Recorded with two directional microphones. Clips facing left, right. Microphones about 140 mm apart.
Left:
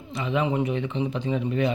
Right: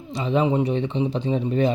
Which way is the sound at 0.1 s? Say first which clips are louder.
Right 4 dB; 35° right (ahead or behind).